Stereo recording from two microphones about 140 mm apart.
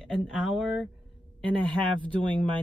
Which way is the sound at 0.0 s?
Centre (ahead or behind).